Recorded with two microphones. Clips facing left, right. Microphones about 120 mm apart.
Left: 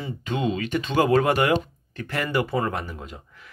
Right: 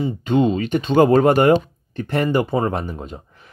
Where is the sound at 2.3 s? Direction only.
25° right (ahead or behind).